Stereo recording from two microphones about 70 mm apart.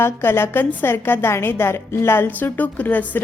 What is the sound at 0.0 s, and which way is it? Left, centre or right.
A woman's voice, left.